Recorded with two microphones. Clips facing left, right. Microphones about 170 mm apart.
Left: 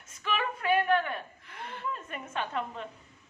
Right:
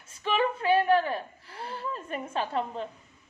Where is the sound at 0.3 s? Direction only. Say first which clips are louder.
Right 4 dB; 30° right (ahead or behind).